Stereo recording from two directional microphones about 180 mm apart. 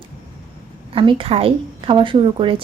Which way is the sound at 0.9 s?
30° right (ahead or behind).